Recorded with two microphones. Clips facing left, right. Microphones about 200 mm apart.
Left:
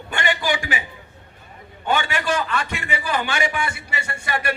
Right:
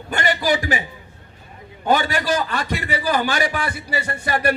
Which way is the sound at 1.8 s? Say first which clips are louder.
Right 3 dB; 40° right (ahead or behind).